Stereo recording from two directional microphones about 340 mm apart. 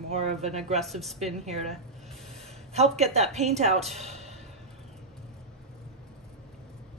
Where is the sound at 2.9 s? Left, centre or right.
Centre.